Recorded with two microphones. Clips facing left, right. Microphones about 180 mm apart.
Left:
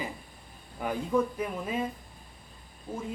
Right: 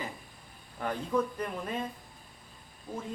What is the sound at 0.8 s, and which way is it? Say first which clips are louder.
Speech: left 3 dB; 5° left (ahead or behind).